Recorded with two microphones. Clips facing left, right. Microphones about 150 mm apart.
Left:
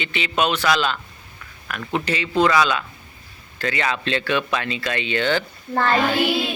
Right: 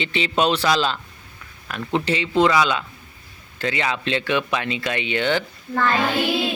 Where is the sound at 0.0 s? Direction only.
30° right (ahead or behind).